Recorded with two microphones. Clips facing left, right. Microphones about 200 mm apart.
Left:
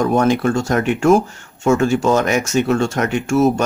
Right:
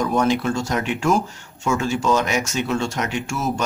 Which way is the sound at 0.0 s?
50° left (ahead or behind).